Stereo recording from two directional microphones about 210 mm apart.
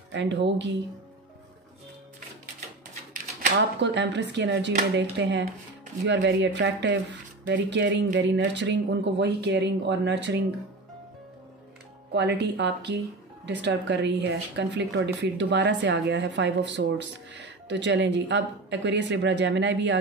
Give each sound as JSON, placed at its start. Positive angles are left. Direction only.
{"t": 0.1, "sound": "speech", "side_deg": -60}
{"t": 3.8, "sound": "speech", "side_deg": -55}
{"t": 12.1, "sound": "speech", "side_deg": -55}